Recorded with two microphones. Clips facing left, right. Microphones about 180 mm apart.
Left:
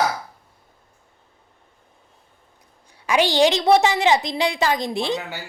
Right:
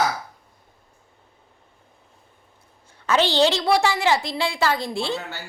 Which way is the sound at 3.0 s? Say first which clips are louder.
Left 1 dB; 15° left (ahead or behind).